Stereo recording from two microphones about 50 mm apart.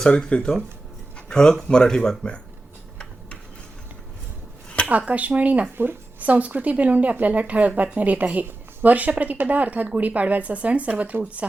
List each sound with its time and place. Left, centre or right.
0.0 s speech: centre
1.1 s a sound: centre
1.6 s speech: centre
4.9 s speech: right
5.7 s a woman's voice: right
6.1 s speech: right